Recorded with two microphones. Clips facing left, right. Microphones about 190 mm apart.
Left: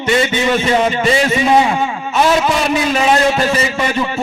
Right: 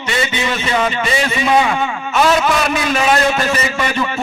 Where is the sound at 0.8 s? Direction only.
40° left (ahead or behind).